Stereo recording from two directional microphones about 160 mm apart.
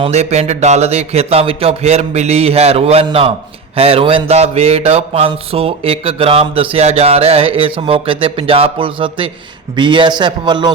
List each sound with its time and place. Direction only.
0.0 s a man's voice: 45° right (ahead or behind)